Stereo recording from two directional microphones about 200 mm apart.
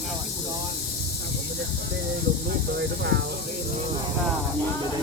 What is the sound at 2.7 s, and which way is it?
Speech, 60° right (ahead or behind).